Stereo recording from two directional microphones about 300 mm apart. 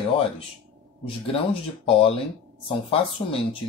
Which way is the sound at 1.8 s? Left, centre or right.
Centre.